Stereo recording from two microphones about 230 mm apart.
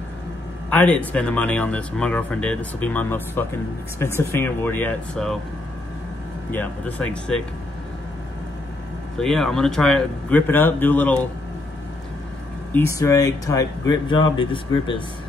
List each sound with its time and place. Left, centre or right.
0.7 s speech: centre
6.5 s speech: centre
9.1 s speech: centre
12.7 s speech: centre